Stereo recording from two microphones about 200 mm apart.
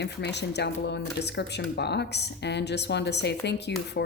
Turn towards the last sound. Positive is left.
turn(degrees=60)  # may be behind; listen again after turning